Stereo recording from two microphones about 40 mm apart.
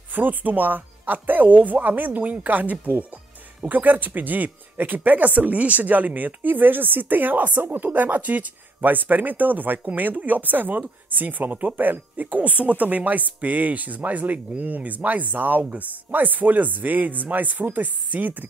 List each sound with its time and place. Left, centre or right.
0.1 s speech: right
12.4 s speech: right